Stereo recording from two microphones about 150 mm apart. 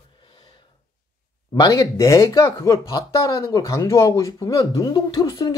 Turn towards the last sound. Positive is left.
turn(degrees=25)  # may be behind; listen again after turning